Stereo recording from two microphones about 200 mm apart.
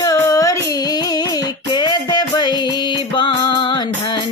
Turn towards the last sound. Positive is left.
turn(degrees=25)  # may be behind; listen again after turning